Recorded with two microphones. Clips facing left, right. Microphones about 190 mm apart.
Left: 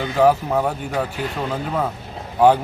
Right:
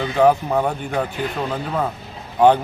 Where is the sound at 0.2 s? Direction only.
5° left (ahead or behind).